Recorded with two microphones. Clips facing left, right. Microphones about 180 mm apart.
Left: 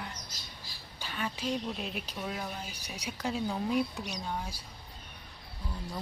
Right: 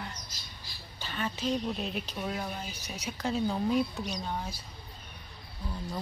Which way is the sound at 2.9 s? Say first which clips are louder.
Right 1 dB; 15° left (ahead or behind).